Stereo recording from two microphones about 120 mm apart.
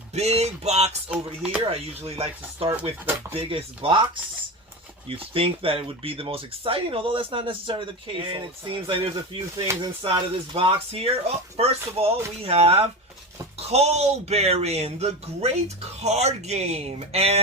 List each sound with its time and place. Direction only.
0.1 s speech: 60° right (ahead or behind)
1.1 s speech: 10° right (ahead or behind)
1.7 s speech: 55° right (ahead or behind)
9.6 s speech: 30° right (ahead or behind)
10.0 s speech: 45° right (ahead or behind)